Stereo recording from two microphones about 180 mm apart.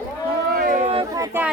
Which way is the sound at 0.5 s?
50° right (ahead or behind).